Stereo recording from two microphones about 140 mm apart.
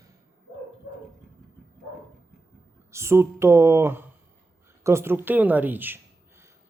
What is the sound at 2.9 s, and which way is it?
A woman's voice, 20° right (ahead or behind).